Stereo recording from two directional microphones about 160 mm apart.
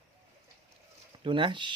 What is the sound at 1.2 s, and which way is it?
Speech, 30° right (ahead or behind).